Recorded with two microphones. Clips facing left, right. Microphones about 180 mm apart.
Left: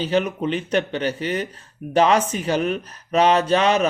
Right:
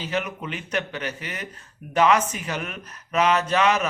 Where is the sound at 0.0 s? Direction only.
30° left (ahead or behind).